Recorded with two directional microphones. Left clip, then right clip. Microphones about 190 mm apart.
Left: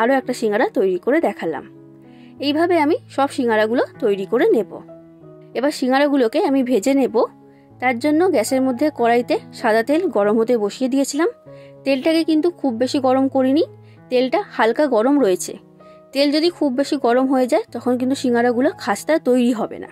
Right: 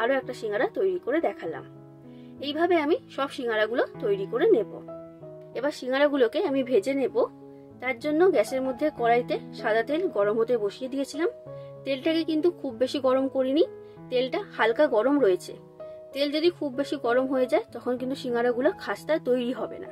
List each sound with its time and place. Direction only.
0.0 s a woman's voice: 45° left (ahead or behind)